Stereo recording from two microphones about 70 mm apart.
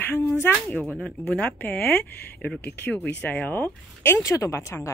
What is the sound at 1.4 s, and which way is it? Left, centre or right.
Speech, left.